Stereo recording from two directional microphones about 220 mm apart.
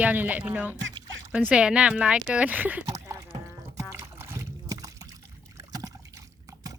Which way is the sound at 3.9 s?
10° right (ahead or behind).